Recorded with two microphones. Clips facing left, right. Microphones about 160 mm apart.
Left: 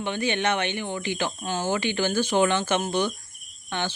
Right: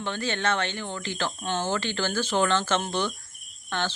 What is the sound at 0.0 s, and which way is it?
Speech, 15° left (ahead or behind).